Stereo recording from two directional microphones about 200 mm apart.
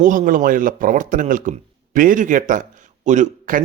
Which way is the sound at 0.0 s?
40° right (ahead or behind).